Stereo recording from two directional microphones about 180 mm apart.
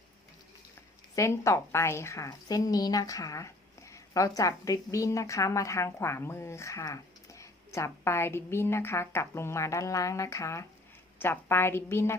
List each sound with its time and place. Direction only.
1.1 s a woman's voice: 15° left (ahead or behind)